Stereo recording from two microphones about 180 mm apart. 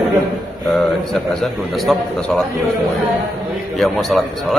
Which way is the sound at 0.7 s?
Centre (ahead or behind).